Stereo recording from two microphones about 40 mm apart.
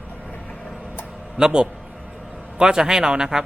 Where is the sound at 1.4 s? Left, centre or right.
Centre.